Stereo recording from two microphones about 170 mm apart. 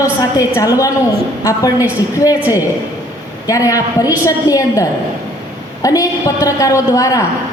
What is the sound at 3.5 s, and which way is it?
A woman's voice, 20° left (ahead or behind).